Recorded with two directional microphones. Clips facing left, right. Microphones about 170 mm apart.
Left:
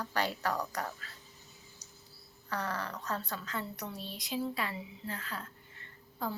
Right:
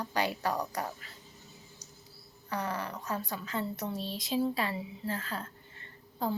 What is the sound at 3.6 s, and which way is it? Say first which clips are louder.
A woman's voice: right 6 dB; 25° right (ahead or behind).